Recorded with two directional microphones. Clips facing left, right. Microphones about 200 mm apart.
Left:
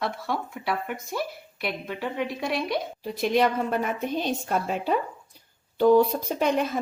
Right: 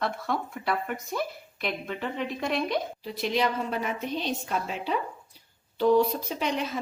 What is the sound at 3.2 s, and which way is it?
Speech, 50° left (ahead or behind).